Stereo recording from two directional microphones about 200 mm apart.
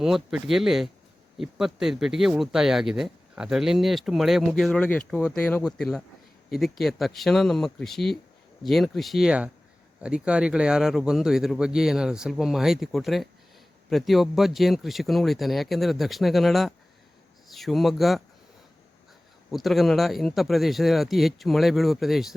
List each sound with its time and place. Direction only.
0.0 s speech: centre (ahead or behind)
19.5 s speech: centre (ahead or behind)